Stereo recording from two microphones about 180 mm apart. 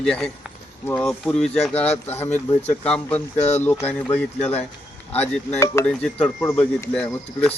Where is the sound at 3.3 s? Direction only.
35° left (ahead or behind).